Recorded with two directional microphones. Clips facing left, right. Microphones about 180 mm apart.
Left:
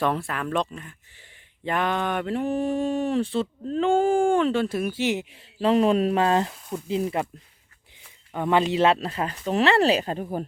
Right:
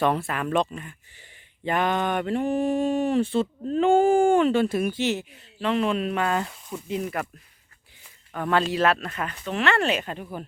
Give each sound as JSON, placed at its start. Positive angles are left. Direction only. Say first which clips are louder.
{"t": 0.0, "sound": "a sound", "louder": "right 2 dB", "side_deg": 0}
{"t": 5.3, "sound": "speech", "louder": "left 5 dB", "side_deg": 35}
{"t": 8.3, "sound": "speech", "louder": "left 2 dB", "side_deg": 20}